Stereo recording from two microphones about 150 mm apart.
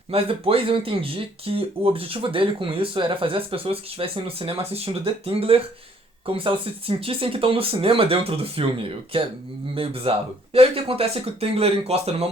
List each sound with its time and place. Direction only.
0.1 s speech: 40° right (ahead or behind)